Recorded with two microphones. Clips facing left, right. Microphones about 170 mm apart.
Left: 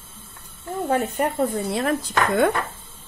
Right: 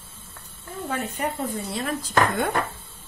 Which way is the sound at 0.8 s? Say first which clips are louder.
Left 7 dB; 45° left (ahead or behind).